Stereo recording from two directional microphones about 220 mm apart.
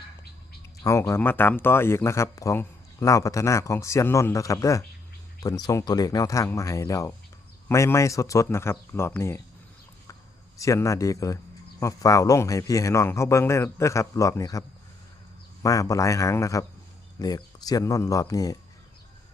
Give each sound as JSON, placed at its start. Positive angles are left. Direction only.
{"t": 0.9, "sound": "speech", "side_deg": 10}
{"t": 10.6, "sound": "speech", "side_deg": 15}
{"t": 15.6, "sound": "speech", "side_deg": 15}